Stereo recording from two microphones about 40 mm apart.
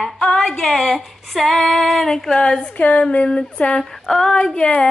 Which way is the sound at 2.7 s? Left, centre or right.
Left.